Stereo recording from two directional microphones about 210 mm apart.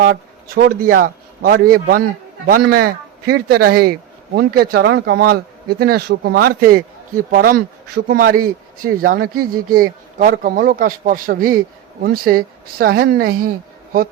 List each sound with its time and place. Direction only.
0.0 s speech: 45° right (ahead or behind)